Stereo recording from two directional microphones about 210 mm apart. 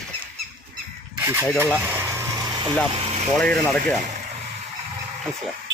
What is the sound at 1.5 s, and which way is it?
Vehicle, 10° right (ahead or behind).